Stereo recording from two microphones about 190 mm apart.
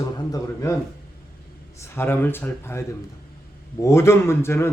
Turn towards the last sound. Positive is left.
turn(degrees=15)  # may be behind; listen again after turning